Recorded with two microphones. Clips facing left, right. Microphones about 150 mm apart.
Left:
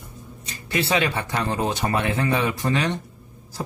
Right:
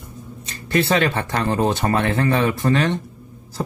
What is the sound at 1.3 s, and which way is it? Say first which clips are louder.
Speech: right 5 dB; 50° right (ahead or behind).